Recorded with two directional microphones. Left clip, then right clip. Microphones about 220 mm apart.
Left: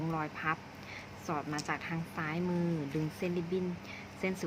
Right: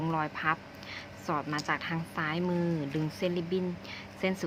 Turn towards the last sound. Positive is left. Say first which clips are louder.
# right 4 dB
turn(degrees=-15)  # may be behind; listen again after turning